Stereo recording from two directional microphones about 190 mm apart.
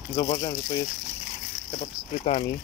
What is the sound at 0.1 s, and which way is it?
Speech, 45° left (ahead or behind).